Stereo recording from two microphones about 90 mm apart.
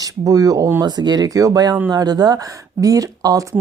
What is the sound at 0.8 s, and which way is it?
Speech, 50° right (ahead or behind).